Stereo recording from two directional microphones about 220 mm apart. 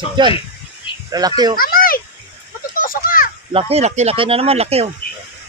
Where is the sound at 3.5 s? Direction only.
25° right (ahead or behind).